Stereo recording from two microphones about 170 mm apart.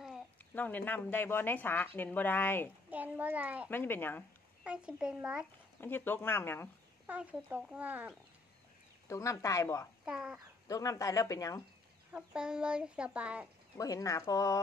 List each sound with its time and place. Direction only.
0.6 s speech: 10° left (ahead or behind)
2.9 s speech: 10° right (ahead or behind)
3.7 s speech: 10° left (ahead or behind)
4.6 s speech: 5° right (ahead or behind)
5.8 s speech: 10° left (ahead or behind)
7.1 s speech: 10° right (ahead or behind)
9.0 s speech: 15° left (ahead or behind)
10.0 s speech: 5° right (ahead or behind)
10.7 s speech: 20° left (ahead or behind)
12.1 s speech: 5° right (ahead or behind)
13.7 s speech: 20° left (ahead or behind)